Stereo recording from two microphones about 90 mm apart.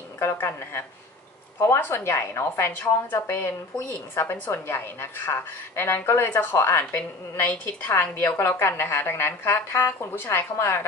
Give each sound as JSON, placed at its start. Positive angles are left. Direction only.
{"t": 0.2, "sound": "a woman's voice", "side_deg": 30}
{"t": 7.0, "sound": "a woman's voice", "side_deg": 15}